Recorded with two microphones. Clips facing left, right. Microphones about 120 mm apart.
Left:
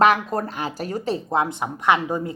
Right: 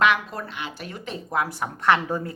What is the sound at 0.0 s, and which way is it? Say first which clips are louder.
Speech: left 4 dB; 40° left (ahead or behind).